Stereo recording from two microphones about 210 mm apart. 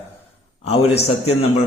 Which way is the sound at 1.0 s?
30° left (ahead or behind).